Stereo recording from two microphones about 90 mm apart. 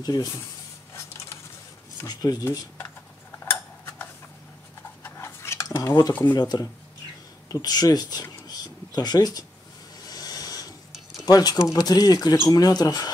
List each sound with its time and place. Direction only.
0.0 s speech: 45° left (ahead or behind)
2.0 s speech: 50° left (ahead or behind)
5.0 s cutlery: 30° left (ahead or behind)
6.3 s speech: 45° left (ahead or behind)
10.0 s a sound: 45° left (ahead or behind)
11.2 s speech: 45° left (ahead or behind)